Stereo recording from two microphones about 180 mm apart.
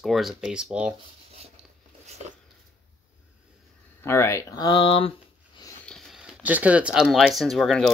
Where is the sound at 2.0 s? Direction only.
35° right (ahead or behind).